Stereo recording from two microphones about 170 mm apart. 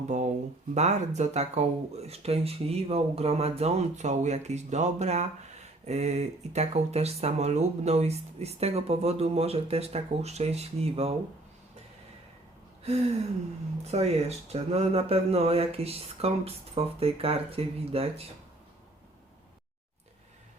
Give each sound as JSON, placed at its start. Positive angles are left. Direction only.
{"t": 0.1, "sound": "speech", "side_deg": -45}
{"t": 13.8, "sound": "speech", "side_deg": -40}